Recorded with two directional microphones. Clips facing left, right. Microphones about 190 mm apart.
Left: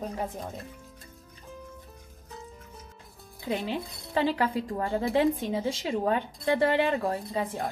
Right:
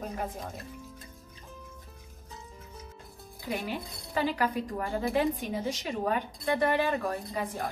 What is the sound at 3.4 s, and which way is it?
A woman's voice, 25° left (ahead or behind).